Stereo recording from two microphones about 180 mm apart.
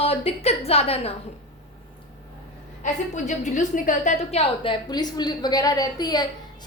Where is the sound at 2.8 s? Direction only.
45° left (ahead or behind).